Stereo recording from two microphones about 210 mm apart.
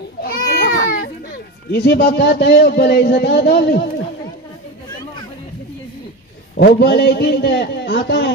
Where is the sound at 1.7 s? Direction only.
50° left (ahead or behind).